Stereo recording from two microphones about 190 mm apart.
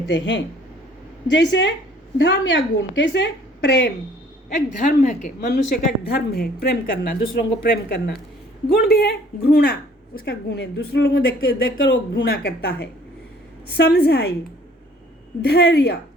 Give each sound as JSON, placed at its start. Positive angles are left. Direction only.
{"t": 0.1, "sound": "a woman's voice", "side_deg": 75}
{"t": 4.4, "sound": "a woman's voice", "side_deg": 40}
{"t": 5.5, "sound": "a woman's voice", "side_deg": 55}
{"t": 11.6, "sound": "speech", "side_deg": 80}
{"t": 12.2, "sound": "speech", "side_deg": 60}
{"t": 15.4, "sound": "speech", "side_deg": 60}